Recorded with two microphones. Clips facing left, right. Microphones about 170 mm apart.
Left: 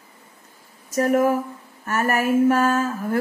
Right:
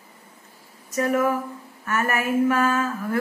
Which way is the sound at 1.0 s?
40° left (ahead or behind).